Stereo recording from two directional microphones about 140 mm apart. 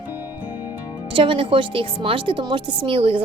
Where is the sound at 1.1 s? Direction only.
40° right (ahead or behind).